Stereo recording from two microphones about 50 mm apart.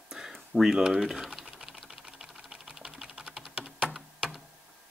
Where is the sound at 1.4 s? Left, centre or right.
Centre.